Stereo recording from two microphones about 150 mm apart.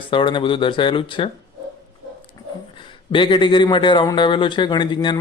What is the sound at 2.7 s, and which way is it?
Speech, 35° left (ahead or behind).